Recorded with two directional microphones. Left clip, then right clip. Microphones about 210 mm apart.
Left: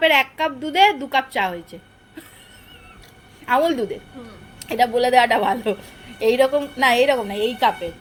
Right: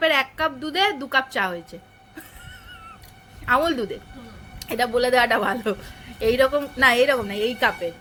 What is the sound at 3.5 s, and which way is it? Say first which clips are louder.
Speech: left 4 dB; 25° right (ahead or behind).